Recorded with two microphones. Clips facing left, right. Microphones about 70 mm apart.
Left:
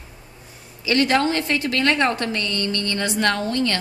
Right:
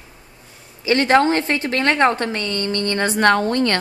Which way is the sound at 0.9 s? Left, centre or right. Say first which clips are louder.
Right 4 dB; right.